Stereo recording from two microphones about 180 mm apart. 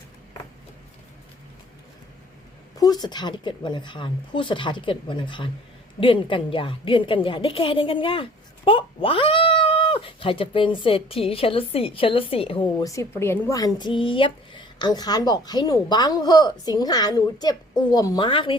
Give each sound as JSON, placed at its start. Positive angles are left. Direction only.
{"t": 2.7, "sound": "a woman's voice", "side_deg": 20}